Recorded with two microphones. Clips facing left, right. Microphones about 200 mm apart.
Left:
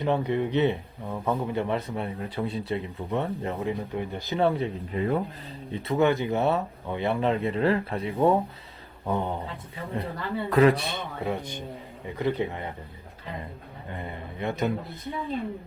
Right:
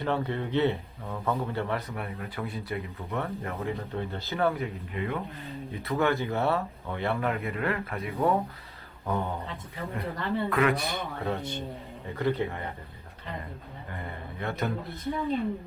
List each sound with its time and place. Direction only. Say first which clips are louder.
0.0 s a man's voice: left 4 dB; 15° left (ahead or behind); by 5.2 s 35° left (ahead or behind)
5.7 s speech: left 4 dB; 25° left (ahead or behind)
9.0 s a man's voice: left 2 dB; 15° left (ahead or behind)
10.2 s speech: right 1 dB; centre (ahead or behind)
10.5 s a man's voice: left 8 dB; 30° left (ahead or behind)
13.9 s a sound: left 3 dB; 20° left (ahead or behind)